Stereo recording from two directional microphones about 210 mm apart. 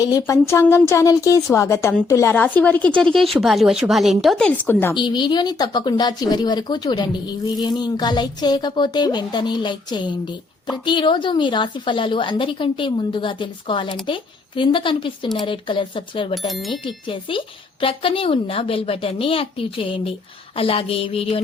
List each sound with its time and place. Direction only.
0.0 s a woman's voice: 15° left (ahead or behind)
4.9 s speech: 20° left (ahead or behind)
16.5 s speech: centre (ahead or behind)
16.8 s speech: 25° left (ahead or behind)